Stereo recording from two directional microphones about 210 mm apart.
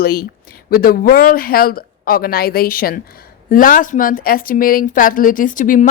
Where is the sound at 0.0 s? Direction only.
45° left (ahead or behind).